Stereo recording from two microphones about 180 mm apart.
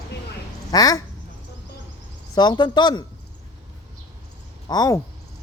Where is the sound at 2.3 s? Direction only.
25° left (ahead or behind).